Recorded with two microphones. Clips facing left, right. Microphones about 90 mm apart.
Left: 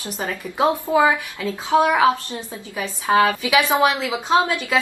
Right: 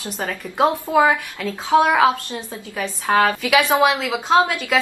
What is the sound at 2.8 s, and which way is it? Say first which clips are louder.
Speech: even; 5° left (ahead or behind).